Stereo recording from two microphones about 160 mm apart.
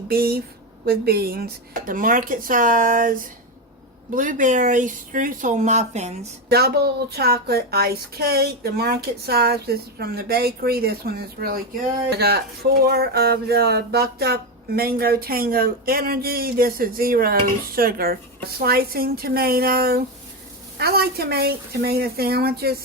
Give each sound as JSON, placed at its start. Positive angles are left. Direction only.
{"t": 0.1, "sound": "speech", "side_deg": -75}
{"t": 1.9, "sound": "speech", "side_deg": -60}
{"t": 6.5, "sound": "speech", "side_deg": -80}
{"t": 12.1, "sound": "speech", "side_deg": -80}